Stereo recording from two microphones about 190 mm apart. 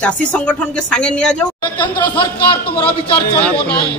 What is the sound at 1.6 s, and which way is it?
Speech, 25° left (ahead or behind).